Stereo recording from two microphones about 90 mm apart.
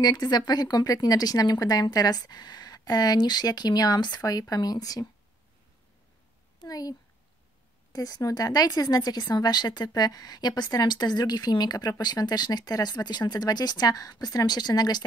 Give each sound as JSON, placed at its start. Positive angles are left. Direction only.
{"t": 0.0, "sound": "speech", "side_deg": 50}
{"t": 6.6, "sound": "speech", "side_deg": 45}